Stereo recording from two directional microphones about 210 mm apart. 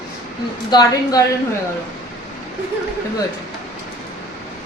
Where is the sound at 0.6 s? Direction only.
20° left (ahead or behind).